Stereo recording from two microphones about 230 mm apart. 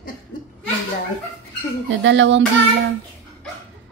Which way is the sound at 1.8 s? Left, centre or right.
Right.